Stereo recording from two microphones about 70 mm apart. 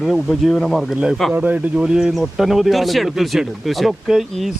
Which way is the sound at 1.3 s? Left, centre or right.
Right.